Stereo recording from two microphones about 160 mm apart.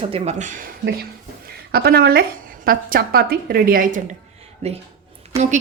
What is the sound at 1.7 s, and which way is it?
A woman's voice, 75° right (ahead or behind).